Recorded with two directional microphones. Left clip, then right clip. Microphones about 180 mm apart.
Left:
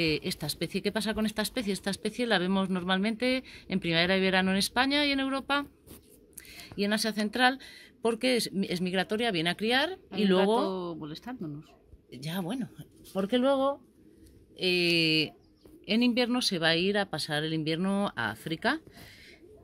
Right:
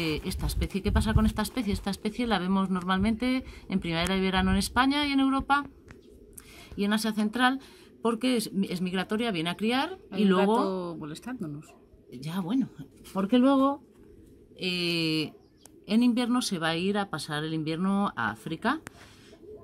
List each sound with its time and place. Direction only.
0.0 s speech: 30° left (ahead or behind)
10.7 s speech: centre (ahead or behind)
12.1 s speech: 30° left (ahead or behind)
14.6 s speech: 30° left (ahead or behind)